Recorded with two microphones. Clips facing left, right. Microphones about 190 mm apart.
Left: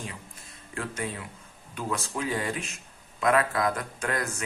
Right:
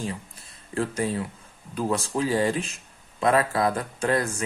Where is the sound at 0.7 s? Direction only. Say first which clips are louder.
Right 7 dB; 35° right (ahead or behind).